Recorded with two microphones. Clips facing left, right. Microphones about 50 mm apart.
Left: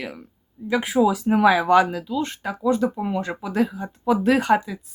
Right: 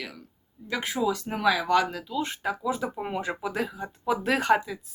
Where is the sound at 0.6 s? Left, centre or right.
Centre.